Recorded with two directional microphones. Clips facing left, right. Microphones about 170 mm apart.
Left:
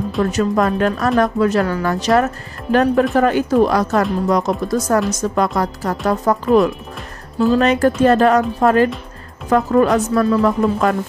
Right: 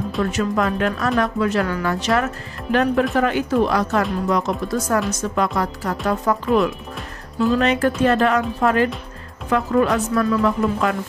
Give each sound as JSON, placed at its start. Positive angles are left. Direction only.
{"t": 0.3, "sound": "speech", "side_deg": 40}